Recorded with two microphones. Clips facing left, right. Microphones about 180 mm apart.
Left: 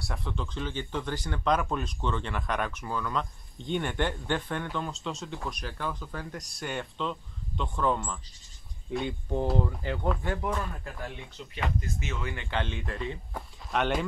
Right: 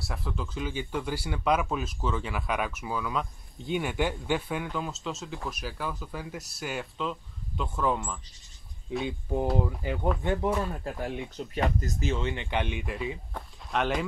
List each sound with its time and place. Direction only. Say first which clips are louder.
0.0 s speech: even; centre (ahead or behind)
10.2 s speech: right 4 dB; 20° right (ahead or behind)
11.3 s speech: right 3 dB; 40° right (ahead or behind); by 14.0 s centre (ahead or behind)